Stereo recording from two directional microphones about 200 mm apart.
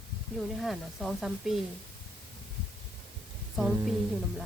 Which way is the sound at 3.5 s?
Centre (ahead or behind).